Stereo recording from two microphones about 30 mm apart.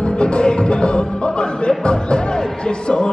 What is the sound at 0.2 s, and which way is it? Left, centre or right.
Music, left.